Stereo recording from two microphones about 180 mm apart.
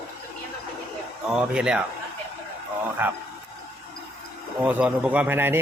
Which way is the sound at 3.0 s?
10° right (ahead or behind).